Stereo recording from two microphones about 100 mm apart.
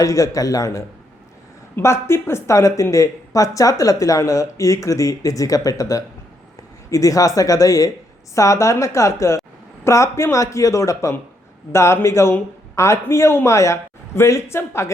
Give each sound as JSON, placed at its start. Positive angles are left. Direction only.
{"t": 0.0, "sound": "speech", "side_deg": 35}